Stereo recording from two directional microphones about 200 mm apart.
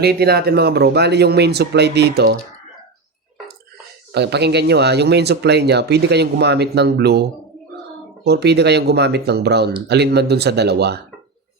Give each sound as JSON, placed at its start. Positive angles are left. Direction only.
{"t": 0.0, "sound": "speech", "side_deg": -55}
{"t": 4.1, "sound": "speech", "side_deg": -55}